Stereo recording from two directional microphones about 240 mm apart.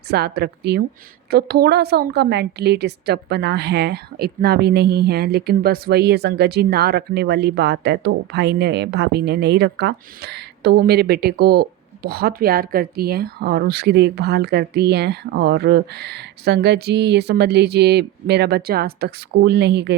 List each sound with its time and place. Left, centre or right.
0.1 s a woman's voice: right